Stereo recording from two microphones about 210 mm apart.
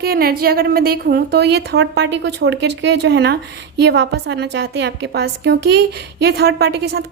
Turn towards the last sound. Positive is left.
turn(degrees=-50)  # may be behind; listen again after turning